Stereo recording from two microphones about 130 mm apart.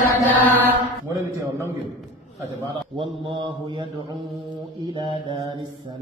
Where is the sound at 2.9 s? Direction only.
40° right (ahead or behind).